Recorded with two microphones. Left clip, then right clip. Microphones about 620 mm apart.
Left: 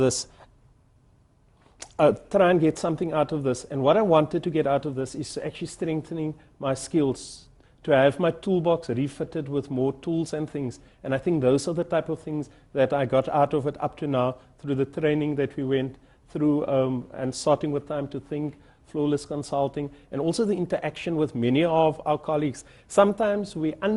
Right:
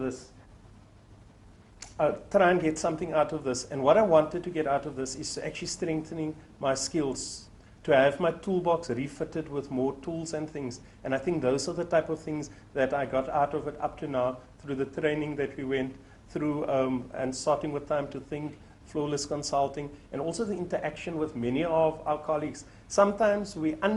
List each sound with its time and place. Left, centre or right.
2.0 s a man's voice: left
16.3 s a man's voice: left